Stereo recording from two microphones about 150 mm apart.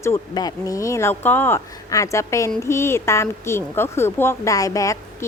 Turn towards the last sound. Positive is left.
turn(degrees=20)  # may be behind; listen again after turning